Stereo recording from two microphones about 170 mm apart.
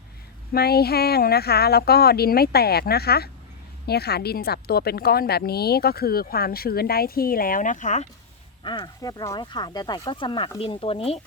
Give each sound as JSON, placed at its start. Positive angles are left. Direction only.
{"t": 0.5, "sound": "speech", "side_deg": 65}
{"t": 8.6, "sound": "speech", "side_deg": 25}